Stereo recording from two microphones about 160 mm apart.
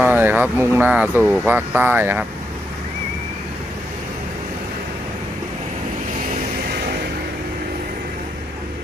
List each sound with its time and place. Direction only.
0.0 s speech: 10° right (ahead or behind)
6.7 s music: 80° right